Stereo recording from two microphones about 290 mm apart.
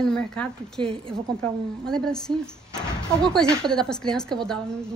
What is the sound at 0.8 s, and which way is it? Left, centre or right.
Speech, centre.